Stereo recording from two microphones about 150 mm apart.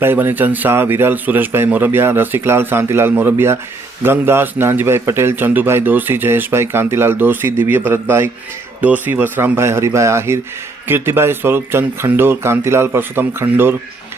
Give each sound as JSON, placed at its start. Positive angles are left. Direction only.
{"t": 0.0, "sound": "a man's voice", "side_deg": -15}